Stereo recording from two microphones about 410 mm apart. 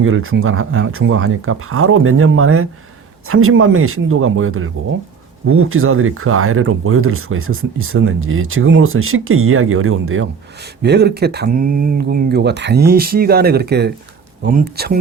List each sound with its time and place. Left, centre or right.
0.0 s speech: right